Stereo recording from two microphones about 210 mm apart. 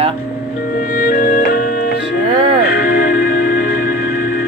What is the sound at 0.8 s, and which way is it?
Music, 45° left (ahead or behind).